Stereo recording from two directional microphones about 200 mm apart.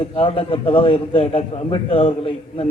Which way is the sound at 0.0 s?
25° left (ahead or behind).